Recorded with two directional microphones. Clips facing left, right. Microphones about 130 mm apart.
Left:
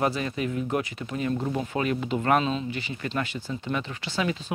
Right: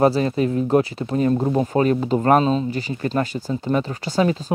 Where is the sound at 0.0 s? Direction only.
35° right (ahead or behind).